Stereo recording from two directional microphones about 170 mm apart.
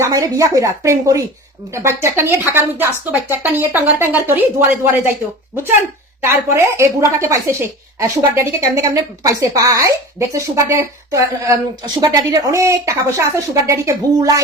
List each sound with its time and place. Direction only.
0.0 s a woman's voice: 20° right (ahead or behind)
6.2 s a woman's voice: 15° right (ahead or behind)